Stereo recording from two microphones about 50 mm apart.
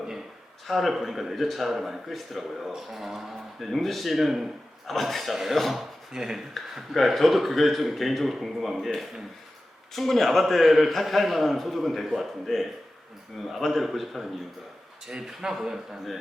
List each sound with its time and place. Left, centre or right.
0.7 s speech: centre
6.1 s speech: centre
6.7 s speech: centre
9.9 s speech: centre
15.0 s speech: centre